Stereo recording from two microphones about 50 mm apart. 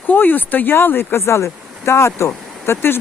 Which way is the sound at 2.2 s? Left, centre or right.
Left.